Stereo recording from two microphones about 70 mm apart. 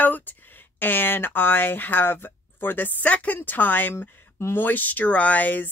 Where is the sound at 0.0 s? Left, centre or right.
Left.